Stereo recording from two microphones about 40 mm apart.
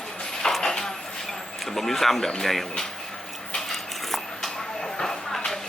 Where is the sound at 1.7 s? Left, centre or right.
Centre.